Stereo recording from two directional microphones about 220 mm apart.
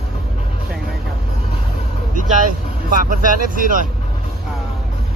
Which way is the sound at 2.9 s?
35° right (ahead or behind).